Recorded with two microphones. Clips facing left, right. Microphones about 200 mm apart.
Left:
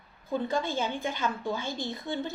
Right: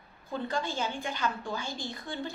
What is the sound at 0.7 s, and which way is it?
A woman's voice, 20° left (ahead or behind).